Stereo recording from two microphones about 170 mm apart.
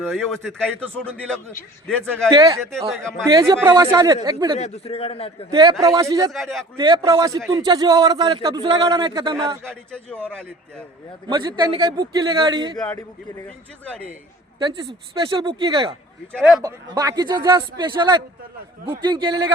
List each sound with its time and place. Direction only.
0.0 s a man's voice: centre (ahead or behind)
2.3 s a man's voice: 20° right (ahead or behind)
2.9 s a man's voice: 5° left (ahead or behind)
3.3 s a man's voice: 15° right (ahead or behind)
4.5 s a man's voice: 40° left (ahead or behind)
5.5 s a man's voice: 25° right (ahead or behind)
6.3 s a man's voice: centre (ahead or behind)
6.7 s a man's voice: 20° right (ahead or behind)
9.6 s a man's voice: 5° left (ahead or behind)
11.3 s a man's voice: 25° right (ahead or behind)
15.3 s a man's voice: 30° right (ahead or behind)